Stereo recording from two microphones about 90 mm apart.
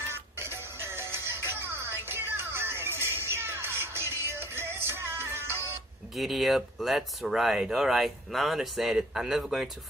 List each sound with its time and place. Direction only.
0.1 s music: 25° right (ahead or behind)
6.1 s speech: centre (ahead or behind)